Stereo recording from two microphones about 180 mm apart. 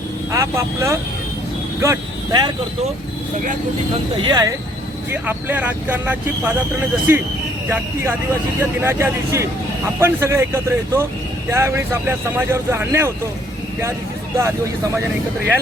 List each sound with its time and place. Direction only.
0.3 s speech: 15° right (ahead or behind)
4.2 s speech: 25° right (ahead or behind)
5.1 s speech: 10° right (ahead or behind)
14.3 s speech: 15° right (ahead or behind)